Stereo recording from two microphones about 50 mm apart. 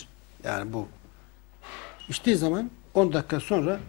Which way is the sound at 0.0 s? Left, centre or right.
Centre.